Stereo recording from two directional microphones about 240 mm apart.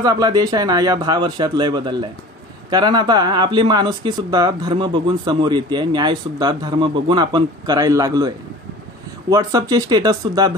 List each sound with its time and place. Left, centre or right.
0.0 s speech: centre
9.3 s speech: centre